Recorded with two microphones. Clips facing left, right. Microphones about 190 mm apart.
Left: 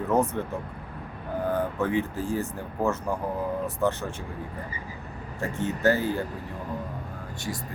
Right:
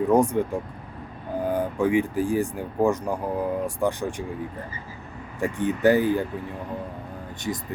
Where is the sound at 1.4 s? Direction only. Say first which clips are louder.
Right 3 dB; 10° right (ahead or behind).